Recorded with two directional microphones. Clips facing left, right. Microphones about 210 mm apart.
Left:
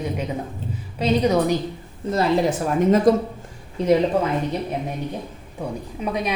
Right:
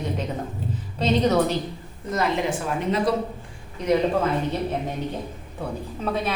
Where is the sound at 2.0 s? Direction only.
30° left (ahead or behind).